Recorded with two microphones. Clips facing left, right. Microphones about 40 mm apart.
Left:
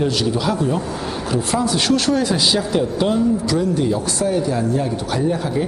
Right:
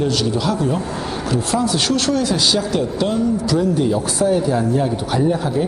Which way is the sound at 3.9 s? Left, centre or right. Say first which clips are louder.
Right 2 dB; centre.